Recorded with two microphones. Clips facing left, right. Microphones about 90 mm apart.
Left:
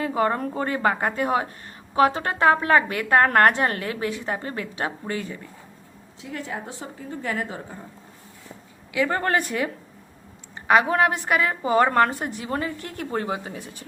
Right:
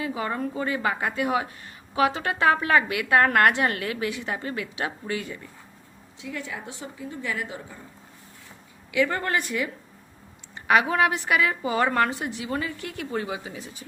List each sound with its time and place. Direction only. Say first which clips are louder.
0.0 s a woman's voice: left 5 dB; 45° left (ahead or behind)
8.9 s a woman's voice: left 1 dB; 30° left (ahead or behind)
9.3 s a woman's voice: left 3 dB; 45° left (ahead or behind)
10.7 s a woman's voice: left 2 dB; 35° left (ahead or behind); by 13.8 s 50° left (ahead or behind)